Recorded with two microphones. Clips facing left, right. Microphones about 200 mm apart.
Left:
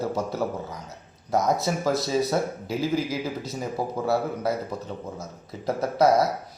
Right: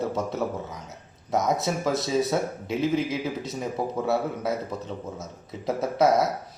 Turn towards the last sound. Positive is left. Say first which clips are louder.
# left 1 dB
turn(degrees=-5)  # may be behind; listen again after turning